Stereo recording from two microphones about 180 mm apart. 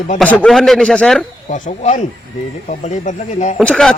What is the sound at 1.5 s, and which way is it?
Speech, 40° left (ahead or behind).